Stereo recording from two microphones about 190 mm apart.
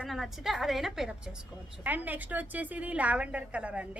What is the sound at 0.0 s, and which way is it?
A woman's voice, centre (ahead or behind).